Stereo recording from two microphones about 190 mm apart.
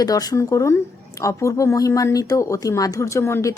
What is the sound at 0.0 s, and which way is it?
A woman's voice, 20° left (ahead or behind).